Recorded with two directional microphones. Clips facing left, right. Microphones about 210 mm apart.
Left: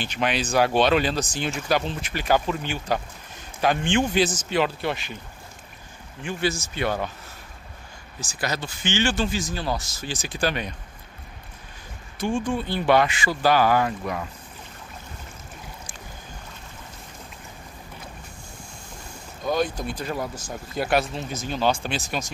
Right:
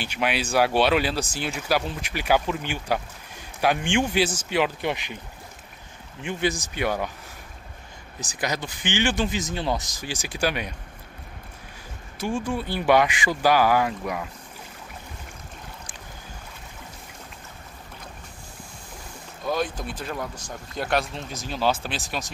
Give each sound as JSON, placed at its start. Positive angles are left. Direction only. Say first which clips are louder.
{"t": 0.0, "sound": "speech", "louder": "left 1 dB", "side_deg": -10}
{"t": 6.2, "sound": "speech", "louder": "even", "side_deg": -15}
{"t": 8.2, "sound": "speech", "louder": "even", "side_deg": -15}
{"t": 12.2, "sound": "speech", "louder": "left 2 dB", "side_deg": -5}
{"t": 19.4, "sound": "speech", "louder": "left 2 dB", "side_deg": 0}